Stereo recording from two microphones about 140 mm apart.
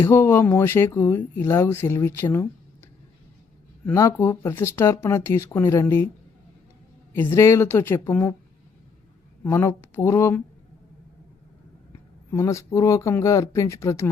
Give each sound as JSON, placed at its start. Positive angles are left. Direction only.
{"t": 0.0, "sound": "a woman's voice", "side_deg": 20}
{"t": 3.8, "sound": "speech", "side_deg": 20}
{"t": 7.1, "sound": "a woman's voice", "side_deg": 15}
{"t": 9.4, "sound": "speech", "side_deg": 20}
{"t": 12.3, "sound": "speech", "side_deg": 20}